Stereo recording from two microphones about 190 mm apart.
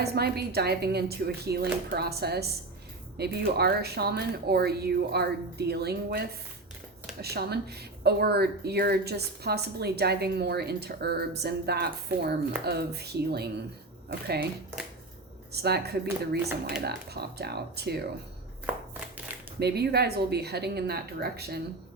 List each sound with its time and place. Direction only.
0.0 s speech: 55° right (ahead or behind)
15.5 s speech: 60° right (ahead or behind)
19.5 s speech: 60° right (ahead or behind)